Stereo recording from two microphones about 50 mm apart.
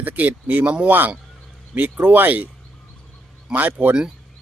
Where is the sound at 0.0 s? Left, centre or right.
Right.